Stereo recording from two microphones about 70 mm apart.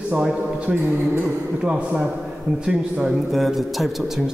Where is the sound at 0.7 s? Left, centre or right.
Centre.